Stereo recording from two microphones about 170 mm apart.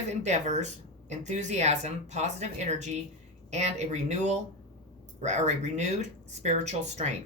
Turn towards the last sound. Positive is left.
turn(degrees=-40)  # may be behind; listen again after turning